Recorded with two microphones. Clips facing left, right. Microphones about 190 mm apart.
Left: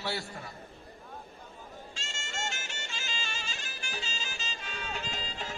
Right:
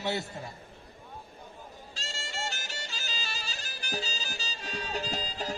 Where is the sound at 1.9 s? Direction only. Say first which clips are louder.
Right 2 dB; 35° right (ahead or behind).